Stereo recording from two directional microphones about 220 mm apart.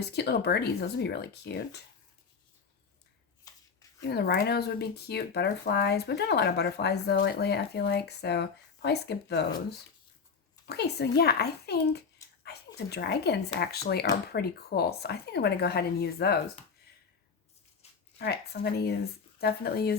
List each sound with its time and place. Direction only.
0.0 s speech: 50° left (ahead or behind)
3.5 s a sound: 15° left (ahead or behind)
4.0 s speech: 50° left (ahead or behind)
10.7 s speech: 50° left (ahead or behind)
17.8 s a sound: 30° left (ahead or behind)
18.2 s speech: 45° left (ahead or behind)